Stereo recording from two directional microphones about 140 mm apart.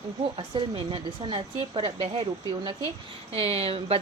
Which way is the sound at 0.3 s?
35° right (ahead or behind).